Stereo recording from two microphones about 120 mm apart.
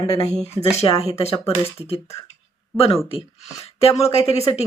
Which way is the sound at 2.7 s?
55° left (ahead or behind).